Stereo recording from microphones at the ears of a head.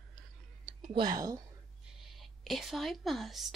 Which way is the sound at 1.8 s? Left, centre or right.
Right.